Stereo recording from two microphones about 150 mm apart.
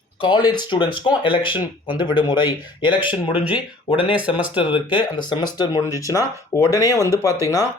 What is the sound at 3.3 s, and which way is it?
Speech, 10° right (ahead or behind).